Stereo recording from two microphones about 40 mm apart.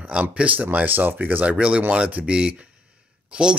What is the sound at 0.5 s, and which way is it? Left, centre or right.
Speech, right.